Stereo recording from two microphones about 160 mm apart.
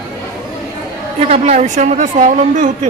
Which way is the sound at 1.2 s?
40° right (ahead or behind).